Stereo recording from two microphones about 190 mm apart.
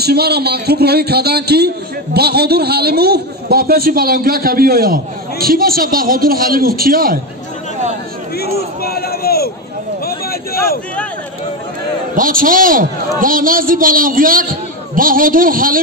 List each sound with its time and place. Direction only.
0.0 s a man's voice: 55° right (ahead or behind)
8.4 s a sound: 55° left (ahead or behind)
12.2 s a man's voice: 45° right (ahead or behind)